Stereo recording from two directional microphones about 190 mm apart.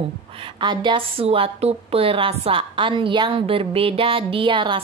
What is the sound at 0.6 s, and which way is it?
A woman's voice, 25° right (ahead or behind).